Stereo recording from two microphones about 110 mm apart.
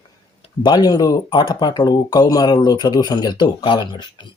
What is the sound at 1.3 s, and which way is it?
Speech, 45° left (ahead or behind).